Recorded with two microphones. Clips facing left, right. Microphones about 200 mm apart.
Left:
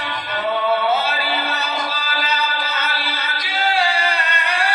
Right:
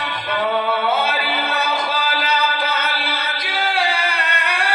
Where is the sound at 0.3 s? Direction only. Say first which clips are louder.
Even; 60° right (ahead or behind).